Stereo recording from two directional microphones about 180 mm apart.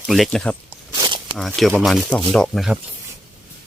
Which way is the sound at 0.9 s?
25° right (ahead or behind).